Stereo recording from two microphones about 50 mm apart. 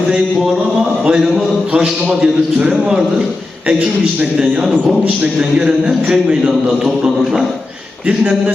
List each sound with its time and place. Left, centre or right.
1.0 s a man's voice: centre
5.4 s a man's voice: centre
8.0 s a man's voice: right